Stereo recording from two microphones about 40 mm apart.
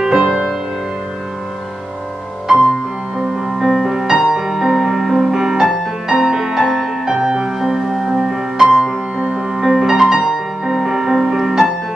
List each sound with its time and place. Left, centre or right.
0.0 s music: centre
2.4 s music: centre